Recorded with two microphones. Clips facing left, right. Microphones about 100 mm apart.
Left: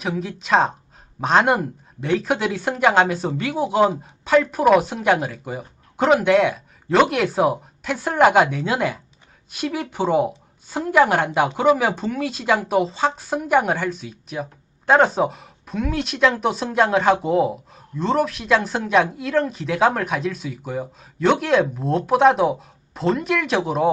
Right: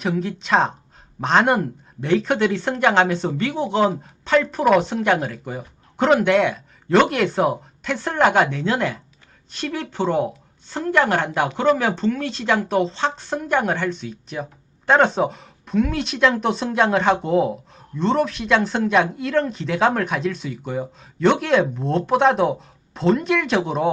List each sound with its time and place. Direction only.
0.0 s speech: centre (ahead or behind)